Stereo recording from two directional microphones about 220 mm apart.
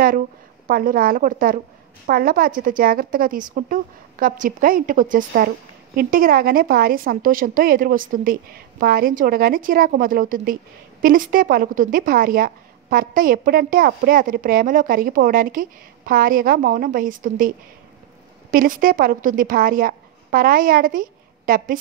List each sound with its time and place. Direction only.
0.7 s a woman's voice: 40° right (ahead or behind)
18.5 s a woman's voice: 40° right (ahead or behind)